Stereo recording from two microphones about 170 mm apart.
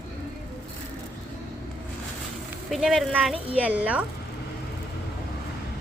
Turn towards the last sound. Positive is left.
turn(degrees=-10)  # may be behind; listen again after turning